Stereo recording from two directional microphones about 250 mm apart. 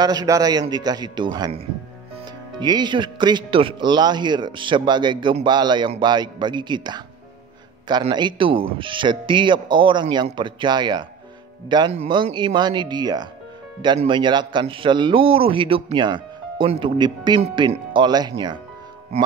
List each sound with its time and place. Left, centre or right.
0.0 s speech: centre
2.6 s a man's voice: centre